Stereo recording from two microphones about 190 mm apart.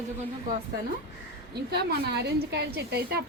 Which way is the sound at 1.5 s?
60° right (ahead or behind).